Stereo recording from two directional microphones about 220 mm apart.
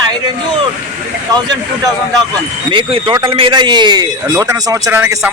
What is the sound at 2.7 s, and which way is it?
Speech, 20° right (ahead or behind).